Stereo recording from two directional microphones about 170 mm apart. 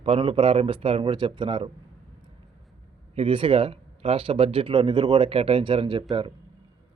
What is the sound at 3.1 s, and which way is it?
Speech, 35° right (ahead or behind).